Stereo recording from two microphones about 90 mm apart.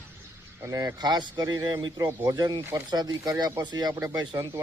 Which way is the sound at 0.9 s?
50° right (ahead or behind).